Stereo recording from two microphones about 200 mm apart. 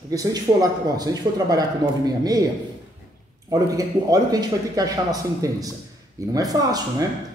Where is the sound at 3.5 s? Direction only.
15° right (ahead or behind).